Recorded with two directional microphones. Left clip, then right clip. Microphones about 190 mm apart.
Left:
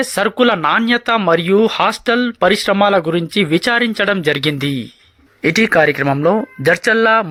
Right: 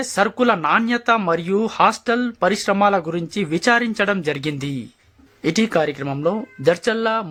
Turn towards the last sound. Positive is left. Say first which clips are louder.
# left 8 dB
turn(degrees=15)  # may be behind; listen again after turning